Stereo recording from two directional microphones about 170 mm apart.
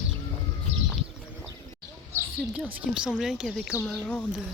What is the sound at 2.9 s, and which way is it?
Speech, 5° right (ahead or behind).